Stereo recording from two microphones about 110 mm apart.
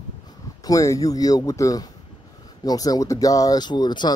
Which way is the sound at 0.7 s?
30° left (ahead or behind).